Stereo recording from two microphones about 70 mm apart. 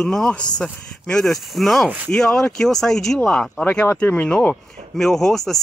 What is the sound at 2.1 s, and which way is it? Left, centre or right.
Speech, centre.